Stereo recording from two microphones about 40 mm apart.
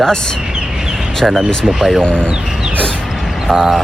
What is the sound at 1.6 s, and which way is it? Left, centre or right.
Mantra, centre.